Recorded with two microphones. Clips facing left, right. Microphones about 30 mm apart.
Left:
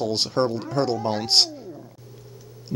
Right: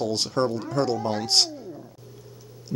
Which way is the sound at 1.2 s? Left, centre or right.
Left.